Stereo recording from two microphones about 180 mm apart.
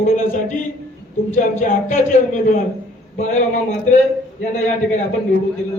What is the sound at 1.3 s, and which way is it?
A man's voice, 45° left (ahead or behind).